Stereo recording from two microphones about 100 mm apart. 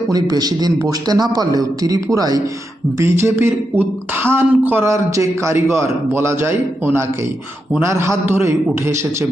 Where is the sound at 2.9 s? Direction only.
25° right (ahead or behind).